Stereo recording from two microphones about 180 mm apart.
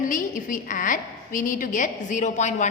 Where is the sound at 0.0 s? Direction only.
45° left (ahead or behind).